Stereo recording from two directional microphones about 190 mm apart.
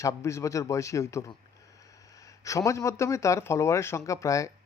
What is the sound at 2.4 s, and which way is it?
Speech, 15° left (ahead or behind).